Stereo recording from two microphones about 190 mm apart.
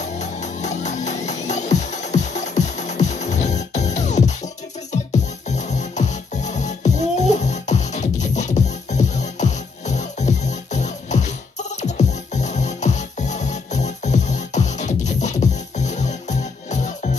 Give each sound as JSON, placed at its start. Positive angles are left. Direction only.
{"t": 0.0, "sound": "music", "side_deg": 35}